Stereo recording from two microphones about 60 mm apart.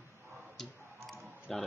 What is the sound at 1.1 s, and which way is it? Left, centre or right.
Typing, centre.